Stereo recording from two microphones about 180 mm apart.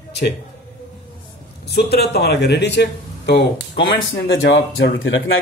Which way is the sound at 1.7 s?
60° left (ahead or behind).